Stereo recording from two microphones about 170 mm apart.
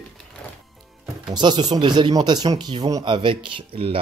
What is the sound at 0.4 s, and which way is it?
Music, 5° left (ahead or behind).